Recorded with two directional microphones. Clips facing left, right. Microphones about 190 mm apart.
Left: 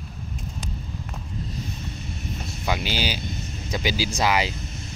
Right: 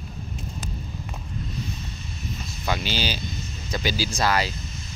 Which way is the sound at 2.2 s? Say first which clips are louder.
Even; 60° left (ahead or behind).